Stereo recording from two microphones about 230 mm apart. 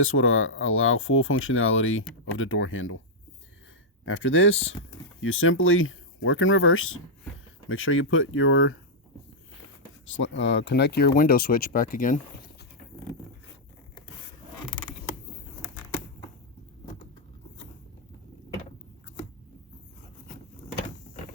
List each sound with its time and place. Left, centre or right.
0.0 s speech: left
4.0 s speech: left
10.1 s speech: left